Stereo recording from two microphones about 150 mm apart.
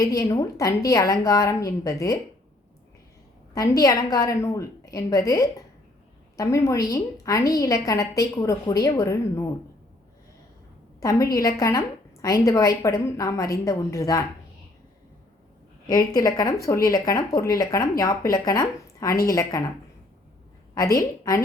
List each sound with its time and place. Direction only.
0.0 s a woman's voice: 20° left (ahead or behind)
3.5 s a woman's voice: 25° left (ahead or behind)
11.0 s a woman's voice: 20° left (ahead or behind)
15.9 s a woman's voice: 25° left (ahead or behind)
20.7 s a woman's voice: 25° left (ahead or behind)